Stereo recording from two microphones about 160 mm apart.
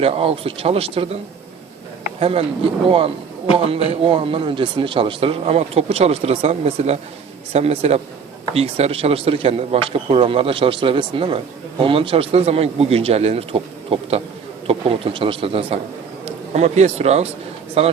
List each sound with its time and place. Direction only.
0.0 s a man's voice: 40° right (ahead or behind)